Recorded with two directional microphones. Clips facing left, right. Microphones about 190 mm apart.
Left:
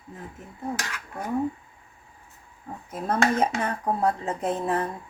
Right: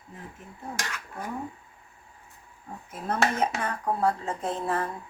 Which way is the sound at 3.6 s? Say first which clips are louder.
Left 2 dB; 20° left (ahead or behind).